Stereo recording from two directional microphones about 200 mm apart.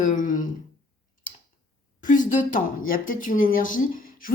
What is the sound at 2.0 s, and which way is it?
A woman's voice, 40° left (ahead or behind).